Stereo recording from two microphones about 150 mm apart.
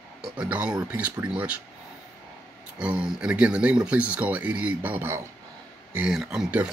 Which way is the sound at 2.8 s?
5° right (ahead or behind).